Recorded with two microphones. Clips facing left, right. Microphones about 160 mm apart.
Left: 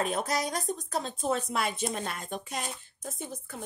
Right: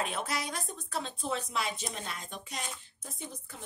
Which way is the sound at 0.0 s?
40° left (ahead or behind).